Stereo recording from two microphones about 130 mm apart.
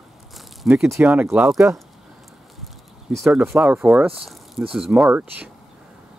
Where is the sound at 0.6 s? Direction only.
5° right (ahead or behind).